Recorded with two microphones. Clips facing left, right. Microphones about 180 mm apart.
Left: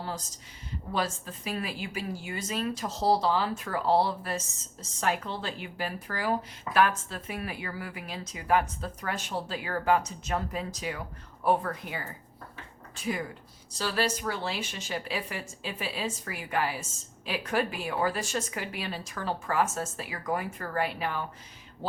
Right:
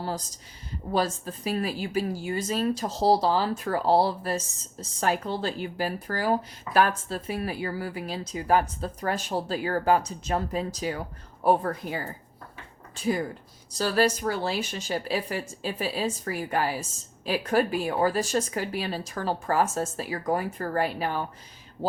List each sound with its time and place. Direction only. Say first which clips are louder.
0.9 s a woman's voice: right 5 dB; 40° right (ahead or behind)
13.7 s a woman's voice: right 6 dB; 45° right (ahead or behind)